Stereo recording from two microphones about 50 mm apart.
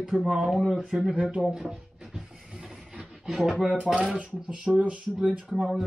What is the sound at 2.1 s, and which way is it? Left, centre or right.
Mechanisms, centre.